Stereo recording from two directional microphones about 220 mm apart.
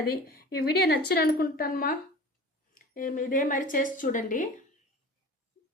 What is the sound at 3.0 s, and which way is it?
A woman's voice, 40° left (ahead or behind).